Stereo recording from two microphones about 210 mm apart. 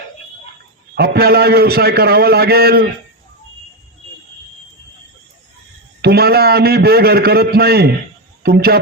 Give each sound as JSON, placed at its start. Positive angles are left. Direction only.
{"t": 0.9, "sound": "a man's voice", "side_deg": -45}
{"t": 6.0, "sound": "a man's voice", "side_deg": -50}